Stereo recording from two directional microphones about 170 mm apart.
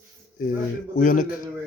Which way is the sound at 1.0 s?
50° left (ahead or behind).